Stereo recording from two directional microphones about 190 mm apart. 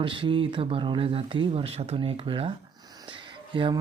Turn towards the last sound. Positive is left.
turn(degrees=-25)  # may be behind; listen again after turning